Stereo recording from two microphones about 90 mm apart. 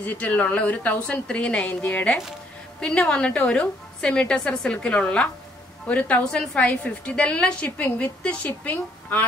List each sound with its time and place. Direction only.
0.0 s a woman's voice: 20° left (ahead or behind)